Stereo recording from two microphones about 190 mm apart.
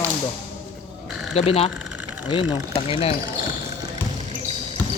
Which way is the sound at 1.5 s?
30° left (ahead or behind).